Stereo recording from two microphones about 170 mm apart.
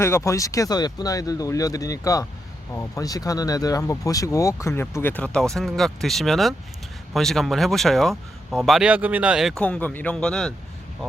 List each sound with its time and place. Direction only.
0.0 s speech: 15° left (ahead or behind)